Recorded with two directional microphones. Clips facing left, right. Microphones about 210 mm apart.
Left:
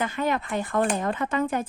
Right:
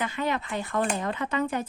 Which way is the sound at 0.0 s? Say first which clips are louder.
Left 3 dB; 50° left (ahead or behind).